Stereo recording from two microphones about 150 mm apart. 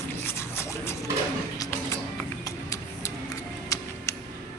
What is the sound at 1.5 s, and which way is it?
Music, 25° left (ahead or behind).